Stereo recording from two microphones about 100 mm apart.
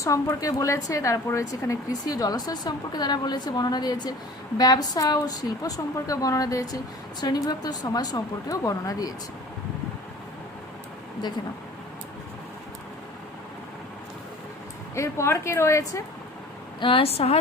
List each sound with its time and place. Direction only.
0.0 s a woman's voice: 30° left (ahead or behind)
14.9 s a woman's voice: 30° left (ahead or behind)
16.8 s speech: 70° left (ahead or behind); by 17.3 s 90° left